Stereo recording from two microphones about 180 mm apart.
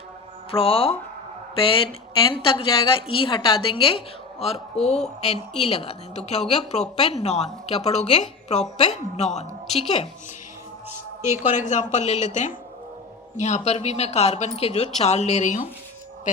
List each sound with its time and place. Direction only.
0.5 s a woman's voice: 30° left (ahead or behind)
11.5 s a woman's voice: 40° left (ahead or behind)